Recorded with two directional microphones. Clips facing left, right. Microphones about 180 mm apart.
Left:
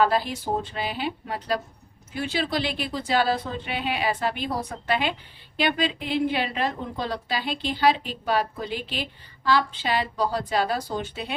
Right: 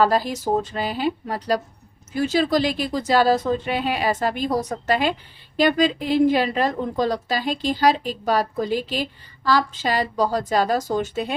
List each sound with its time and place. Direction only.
0.0 s a woman's voice: 40° right (ahead or behind)